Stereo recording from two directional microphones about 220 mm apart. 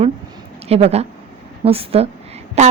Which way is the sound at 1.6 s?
25° right (ahead or behind).